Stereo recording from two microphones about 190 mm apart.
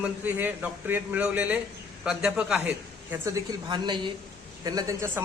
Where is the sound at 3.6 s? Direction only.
25° right (ahead or behind).